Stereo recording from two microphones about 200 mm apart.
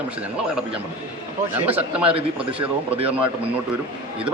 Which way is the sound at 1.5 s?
10° right (ahead or behind).